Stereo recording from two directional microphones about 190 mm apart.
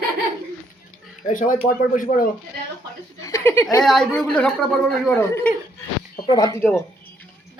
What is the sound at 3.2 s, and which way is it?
Speech, 15° left (ahead or behind).